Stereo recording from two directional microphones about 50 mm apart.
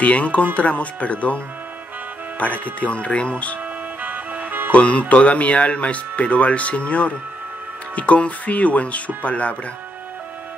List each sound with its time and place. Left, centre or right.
0.0 s speech: left
4.0 s music: right
4.7 s speech: left